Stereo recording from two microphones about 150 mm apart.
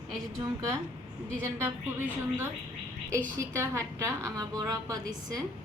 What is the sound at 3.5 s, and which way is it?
A woman's voice, 20° right (ahead or behind).